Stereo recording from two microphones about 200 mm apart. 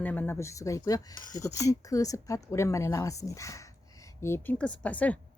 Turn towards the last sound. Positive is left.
turn(degrees=5)  # may be behind; listen again after turning